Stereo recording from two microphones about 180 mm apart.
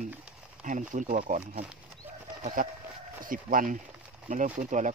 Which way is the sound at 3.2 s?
50° right (ahead or behind).